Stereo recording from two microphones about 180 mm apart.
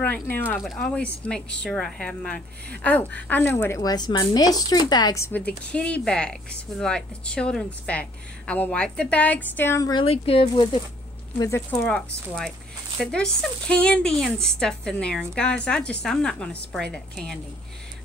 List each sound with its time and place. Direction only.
0.0 s speech: 10° left (ahead or behind)
10.0 s speech: 35° left (ahead or behind); by 11.9 s 15° left (ahead or behind)
11.9 s speech: centre (ahead or behind)